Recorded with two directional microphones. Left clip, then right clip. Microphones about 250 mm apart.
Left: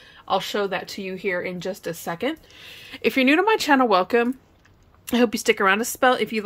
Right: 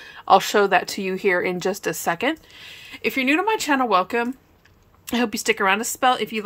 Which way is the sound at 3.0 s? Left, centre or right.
Centre.